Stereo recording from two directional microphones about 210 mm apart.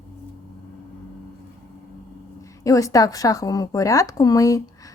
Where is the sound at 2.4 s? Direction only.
15° left (ahead or behind).